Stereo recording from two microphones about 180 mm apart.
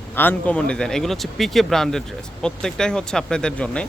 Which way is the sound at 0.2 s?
10° left (ahead or behind).